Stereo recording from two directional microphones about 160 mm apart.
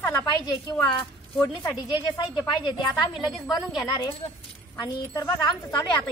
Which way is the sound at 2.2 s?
25° left (ahead or behind).